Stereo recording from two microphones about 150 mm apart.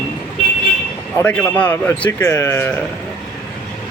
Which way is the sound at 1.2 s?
10° left (ahead or behind).